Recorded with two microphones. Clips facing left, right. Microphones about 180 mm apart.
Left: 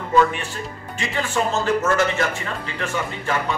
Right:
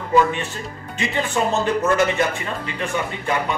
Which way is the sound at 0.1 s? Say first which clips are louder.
Right 1 dB; 20° right (ahead or behind).